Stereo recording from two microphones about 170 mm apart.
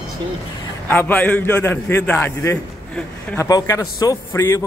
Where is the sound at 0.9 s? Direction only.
10° left (ahead or behind).